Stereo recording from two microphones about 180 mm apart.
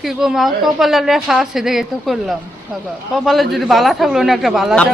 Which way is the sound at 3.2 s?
Centre (ahead or behind).